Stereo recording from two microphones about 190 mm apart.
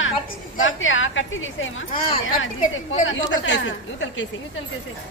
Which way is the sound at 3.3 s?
80° left.